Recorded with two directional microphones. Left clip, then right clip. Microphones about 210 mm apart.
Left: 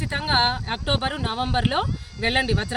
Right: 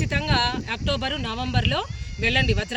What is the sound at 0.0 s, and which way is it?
Speech, 10° left (ahead or behind).